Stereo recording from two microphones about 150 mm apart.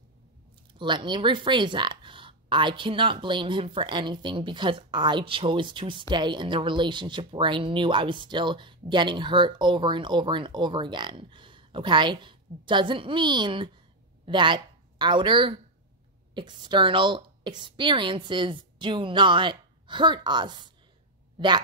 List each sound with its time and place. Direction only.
0.7 s speech: 30° right (ahead or behind)